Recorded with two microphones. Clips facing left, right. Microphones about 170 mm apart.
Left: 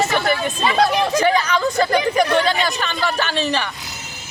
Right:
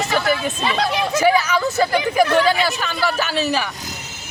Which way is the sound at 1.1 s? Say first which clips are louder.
Right 1 dB; 10° right (ahead or behind).